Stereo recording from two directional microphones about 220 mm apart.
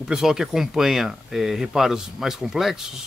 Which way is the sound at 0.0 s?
Centre (ahead or behind).